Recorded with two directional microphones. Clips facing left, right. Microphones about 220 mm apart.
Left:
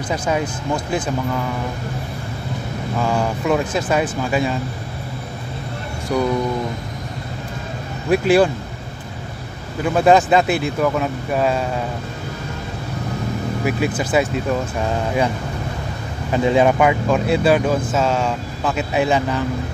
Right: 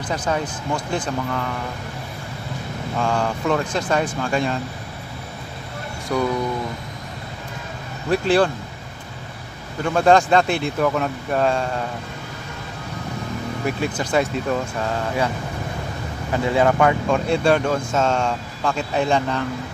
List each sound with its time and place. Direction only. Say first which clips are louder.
0.1 s speech: left 2 dB; 10° left (ahead or behind)
3.0 s speech: left 1 dB; 5° left (ahead or behind)
6.1 s speech: left 2 dB; 10° left (ahead or behind)
8.1 s speech: left 3 dB; 10° left (ahead or behind)
9.8 s speech: left 2 dB; 5° left (ahead or behind)
13.7 s speech: left 3 dB; 10° left (ahead or behind)
16.3 s speech: left 3 dB; 20° left (ahead or behind)